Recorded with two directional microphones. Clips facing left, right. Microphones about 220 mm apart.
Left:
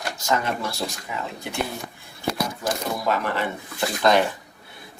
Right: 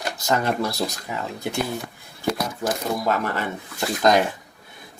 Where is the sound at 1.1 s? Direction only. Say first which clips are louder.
Right 2 dB; 40° right (ahead or behind).